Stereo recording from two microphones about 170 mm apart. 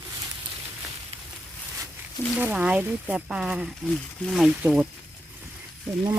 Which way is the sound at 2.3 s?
10° right (ahead or behind).